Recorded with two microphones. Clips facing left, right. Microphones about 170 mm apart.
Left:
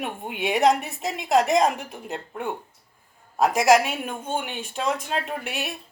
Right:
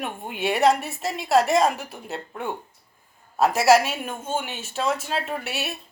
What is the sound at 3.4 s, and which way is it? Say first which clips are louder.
Speech: right 1 dB; 15° left (ahead or behind).